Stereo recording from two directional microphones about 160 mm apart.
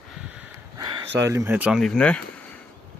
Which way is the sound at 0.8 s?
20° right (ahead or behind).